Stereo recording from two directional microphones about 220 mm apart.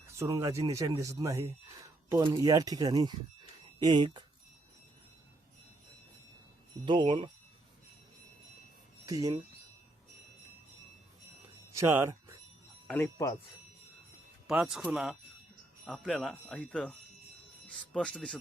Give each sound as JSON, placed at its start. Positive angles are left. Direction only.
{"t": 0.1, "sound": "speech", "side_deg": -15}
{"t": 6.8, "sound": "speech", "side_deg": -20}
{"t": 9.0, "sound": "speech", "side_deg": -15}
{"t": 11.8, "sound": "speech", "side_deg": -15}
{"t": 12.9, "sound": "speech", "side_deg": 15}
{"t": 14.4, "sound": "speech", "side_deg": -5}